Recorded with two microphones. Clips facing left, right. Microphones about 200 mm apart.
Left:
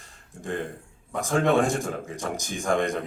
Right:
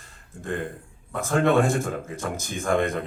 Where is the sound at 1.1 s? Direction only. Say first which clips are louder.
Right 1 dB; 15° left (ahead or behind).